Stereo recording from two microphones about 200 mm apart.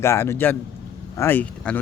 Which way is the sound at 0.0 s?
15° left (ahead or behind).